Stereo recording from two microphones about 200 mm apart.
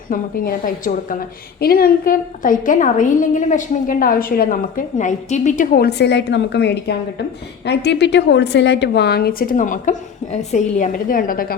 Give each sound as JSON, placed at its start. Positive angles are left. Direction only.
{"t": 0.1, "sound": "a woman's voice", "side_deg": 45}